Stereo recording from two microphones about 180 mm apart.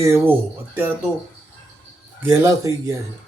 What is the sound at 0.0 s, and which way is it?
Speech, 15° right (ahead or behind).